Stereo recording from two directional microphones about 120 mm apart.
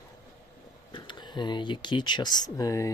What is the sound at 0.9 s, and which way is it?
Speech, 40° left (ahead or behind).